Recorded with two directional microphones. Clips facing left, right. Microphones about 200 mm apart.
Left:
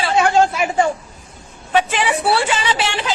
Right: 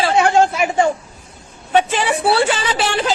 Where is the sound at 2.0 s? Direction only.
35° right (ahead or behind).